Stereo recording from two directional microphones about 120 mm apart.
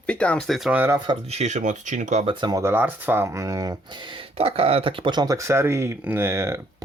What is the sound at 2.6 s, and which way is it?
Speech, 20° right (ahead or behind).